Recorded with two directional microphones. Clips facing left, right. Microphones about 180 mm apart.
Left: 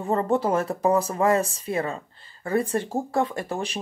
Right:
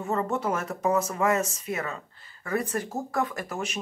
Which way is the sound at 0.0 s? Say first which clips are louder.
Left 5 dB; 30° left (ahead or behind).